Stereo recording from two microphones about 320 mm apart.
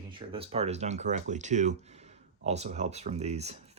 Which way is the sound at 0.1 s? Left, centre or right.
Centre.